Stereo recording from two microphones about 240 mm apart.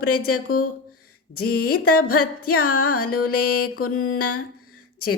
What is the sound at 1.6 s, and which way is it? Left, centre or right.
Music, left.